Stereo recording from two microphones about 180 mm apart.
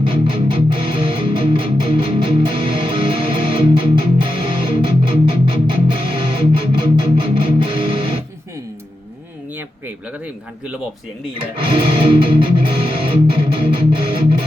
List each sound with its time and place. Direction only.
0.0 s music: 25° right (ahead or behind)
11.6 s music: 25° right (ahead or behind)